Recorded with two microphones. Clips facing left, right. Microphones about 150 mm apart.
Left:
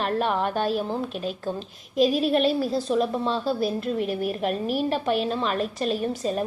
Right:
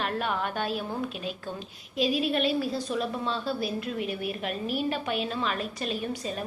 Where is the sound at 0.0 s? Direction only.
40° left (ahead or behind).